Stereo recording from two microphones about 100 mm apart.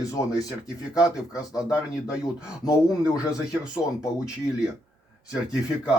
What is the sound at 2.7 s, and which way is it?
Speech, 10° right (ahead or behind).